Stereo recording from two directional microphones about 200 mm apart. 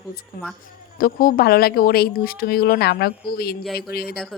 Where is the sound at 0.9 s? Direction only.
45° left (ahead or behind).